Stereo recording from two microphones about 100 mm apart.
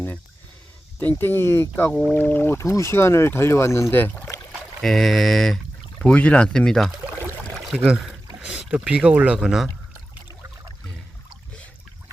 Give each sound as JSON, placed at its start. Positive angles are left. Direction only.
{"t": 1.2, "sound": "speech", "side_deg": 25}
{"t": 4.8, "sound": "speech", "side_deg": 0}
{"t": 7.8, "sound": "speech", "side_deg": -5}